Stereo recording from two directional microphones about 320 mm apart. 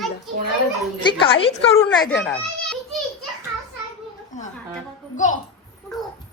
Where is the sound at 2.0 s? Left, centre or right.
Centre.